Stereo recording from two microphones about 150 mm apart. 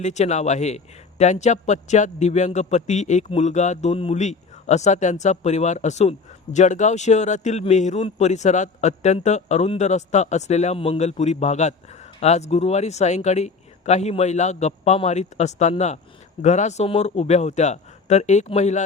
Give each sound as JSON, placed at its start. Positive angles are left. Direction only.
{"t": 0.0, "sound": "a man's voice", "side_deg": 50}